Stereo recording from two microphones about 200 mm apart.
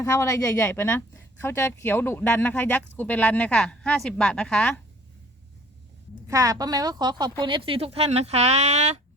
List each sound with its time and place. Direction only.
0.0 s speech: 15° left (ahead or behind)
6.2 s a woman's voice: 15° right (ahead or behind); by 9.0 s 35° right (ahead or behind)